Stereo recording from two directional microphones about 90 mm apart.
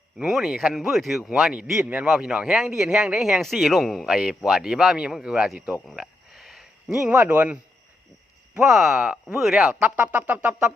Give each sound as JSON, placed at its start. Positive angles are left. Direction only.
{"t": 0.3, "sound": "speech", "side_deg": 0}
{"t": 6.0, "sound": "a sound", "side_deg": -5}
{"t": 7.1, "sound": "speech", "side_deg": -20}
{"t": 8.5, "sound": "speech", "side_deg": -5}